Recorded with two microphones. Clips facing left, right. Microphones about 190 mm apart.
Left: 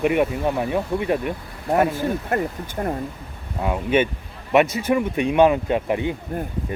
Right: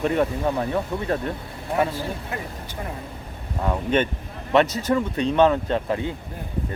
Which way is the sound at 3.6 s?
10° left (ahead or behind).